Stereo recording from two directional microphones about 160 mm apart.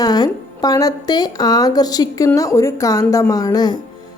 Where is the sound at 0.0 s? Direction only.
25° left (ahead or behind).